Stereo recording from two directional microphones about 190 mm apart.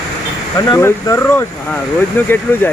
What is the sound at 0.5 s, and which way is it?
Speech, 15° left (ahead or behind).